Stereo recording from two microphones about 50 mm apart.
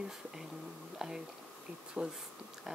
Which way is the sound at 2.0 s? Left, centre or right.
Right.